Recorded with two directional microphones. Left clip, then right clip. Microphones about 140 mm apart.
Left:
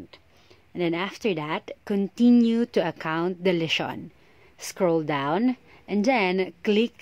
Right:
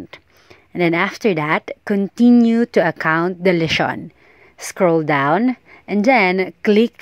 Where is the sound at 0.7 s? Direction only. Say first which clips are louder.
Right 10 dB; 45° right (ahead or behind).